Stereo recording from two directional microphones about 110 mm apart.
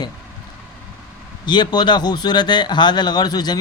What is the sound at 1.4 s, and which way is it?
Speech, 40° left (ahead or behind).